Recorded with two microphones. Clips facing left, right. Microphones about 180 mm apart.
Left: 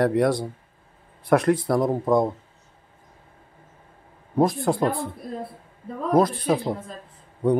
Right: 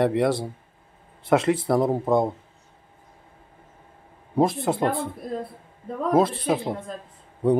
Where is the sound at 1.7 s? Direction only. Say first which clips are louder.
Even; 25° right (ahead or behind).